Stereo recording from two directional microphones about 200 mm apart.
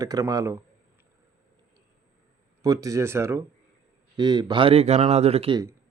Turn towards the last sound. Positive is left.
turn(degrees=-30)  # may be behind; listen again after turning